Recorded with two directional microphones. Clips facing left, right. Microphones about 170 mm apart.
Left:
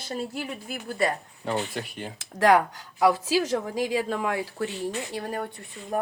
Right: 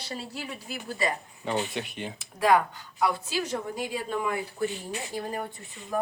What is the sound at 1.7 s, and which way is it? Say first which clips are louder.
Speech: even; centre (ahead or behind).